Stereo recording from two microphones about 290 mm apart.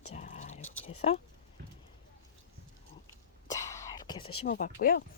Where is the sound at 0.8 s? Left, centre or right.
Centre.